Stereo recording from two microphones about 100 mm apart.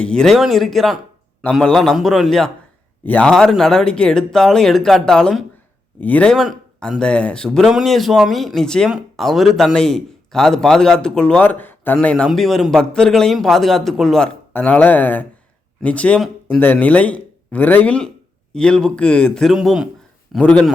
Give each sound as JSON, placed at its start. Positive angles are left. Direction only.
{"t": 0.0, "sound": "a man's voice", "side_deg": 5}
{"t": 3.0, "sound": "a man's voice", "side_deg": 15}
{"t": 6.3, "sound": "a man's voice", "side_deg": 5}
{"t": 11.9, "sound": "a man's voice", "side_deg": 5}
{"t": 14.5, "sound": "a man's voice", "side_deg": 15}
{"t": 19.5, "sound": "speech", "side_deg": -5}
{"t": 20.3, "sound": "a man's voice", "side_deg": 10}